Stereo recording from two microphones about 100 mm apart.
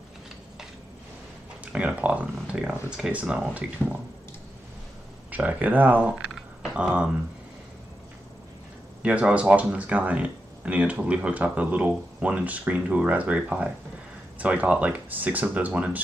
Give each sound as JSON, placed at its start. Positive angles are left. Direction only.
{"t": 1.6, "sound": "speech", "side_deg": -10}
{"t": 5.3, "sound": "speech", "side_deg": -15}
{"t": 9.0, "sound": "speech", "side_deg": -10}